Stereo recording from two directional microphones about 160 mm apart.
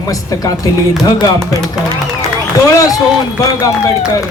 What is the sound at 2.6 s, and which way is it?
Speech, 20° left (ahead or behind).